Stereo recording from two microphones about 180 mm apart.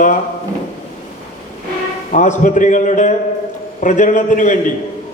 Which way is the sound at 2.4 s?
45° left (ahead or behind).